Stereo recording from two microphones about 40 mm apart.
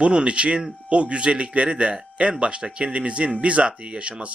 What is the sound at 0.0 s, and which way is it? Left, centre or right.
Speech, right.